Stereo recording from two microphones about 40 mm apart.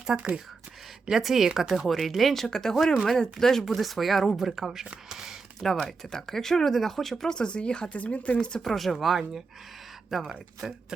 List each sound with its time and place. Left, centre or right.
0.1 s speech: right
1.1 s speech: centre
2.7 s speech: centre
3.4 s speech: centre
5.8 s speech: centre
7.3 s speech: left
8.6 s speech: centre